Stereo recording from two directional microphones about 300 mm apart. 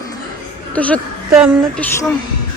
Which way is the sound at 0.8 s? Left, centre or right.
Centre.